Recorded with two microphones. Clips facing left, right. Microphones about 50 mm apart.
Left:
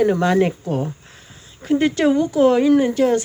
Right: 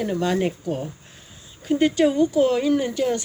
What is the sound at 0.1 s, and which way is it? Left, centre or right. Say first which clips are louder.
Speech: left 6 dB; left.